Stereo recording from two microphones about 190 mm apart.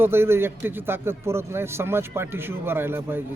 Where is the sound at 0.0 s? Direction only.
10° right (ahead or behind).